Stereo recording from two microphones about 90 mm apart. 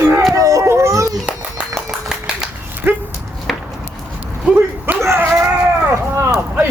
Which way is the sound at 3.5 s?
Centre (ahead or behind).